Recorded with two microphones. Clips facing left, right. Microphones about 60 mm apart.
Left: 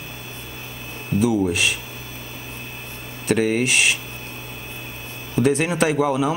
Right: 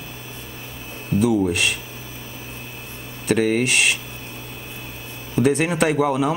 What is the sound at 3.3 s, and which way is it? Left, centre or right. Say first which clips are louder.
Speech: right 1 dB; centre.